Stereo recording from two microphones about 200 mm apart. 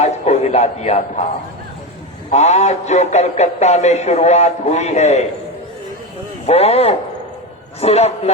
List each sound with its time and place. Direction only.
0.0 s music: 35° left (ahead or behind)
2.3 s a man's voice: 35° left (ahead or behind)
6.4 s a man's voice: 30° left (ahead or behind)